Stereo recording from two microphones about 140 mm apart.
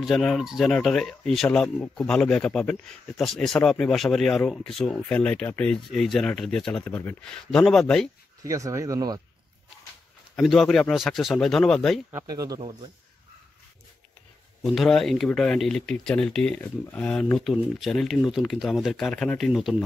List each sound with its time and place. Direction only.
0.0 s speech: centre (ahead or behind)
8.5 s speech: 25° right (ahead or behind)
10.3 s speech: centre (ahead or behind)
12.1 s speech: 25° right (ahead or behind)
12.5 s a man's voice: 45° right (ahead or behind)
14.6 s speech: centre (ahead or behind)